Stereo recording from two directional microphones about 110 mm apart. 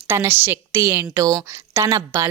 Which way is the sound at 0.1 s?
20° right (ahead or behind).